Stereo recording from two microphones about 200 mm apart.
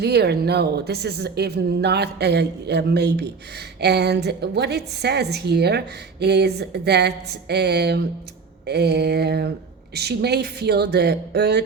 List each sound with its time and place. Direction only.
0.0 s a woman's voice: 55° right (ahead or behind)